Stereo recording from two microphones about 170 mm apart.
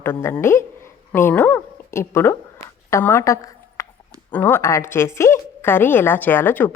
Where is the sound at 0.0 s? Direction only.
15° left (ahead or behind).